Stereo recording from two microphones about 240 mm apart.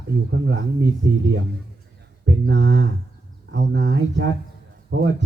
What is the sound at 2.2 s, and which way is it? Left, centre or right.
Speech, right.